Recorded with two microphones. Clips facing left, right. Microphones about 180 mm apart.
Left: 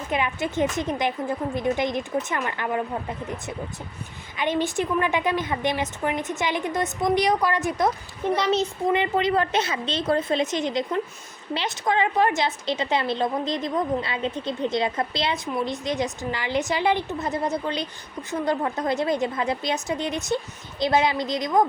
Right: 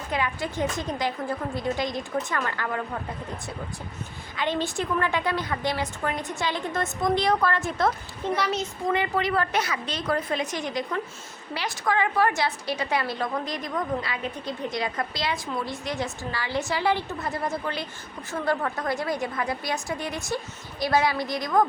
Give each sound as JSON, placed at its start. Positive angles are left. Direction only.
{"t": 0.1, "sound": "a woman's voice", "side_deg": 20}